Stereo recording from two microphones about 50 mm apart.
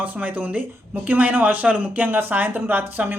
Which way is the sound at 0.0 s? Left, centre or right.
Right.